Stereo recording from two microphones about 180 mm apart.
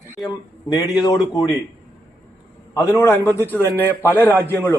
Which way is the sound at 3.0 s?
15° left (ahead or behind).